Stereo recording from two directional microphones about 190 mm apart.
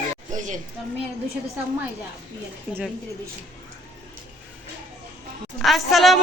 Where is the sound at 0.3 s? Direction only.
40° right (ahead or behind).